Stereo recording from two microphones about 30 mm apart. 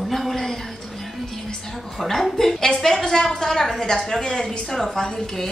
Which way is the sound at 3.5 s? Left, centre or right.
Centre.